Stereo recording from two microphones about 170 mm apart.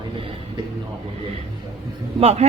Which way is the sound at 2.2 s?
35° right (ahead or behind).